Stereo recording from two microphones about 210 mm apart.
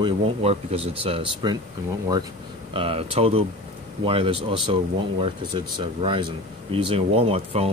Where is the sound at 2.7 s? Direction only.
25° right (ahead or behind).